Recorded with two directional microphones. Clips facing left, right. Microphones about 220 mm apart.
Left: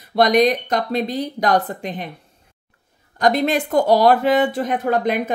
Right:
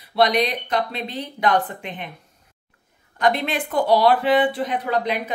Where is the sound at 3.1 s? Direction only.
40° left (ahead or behind).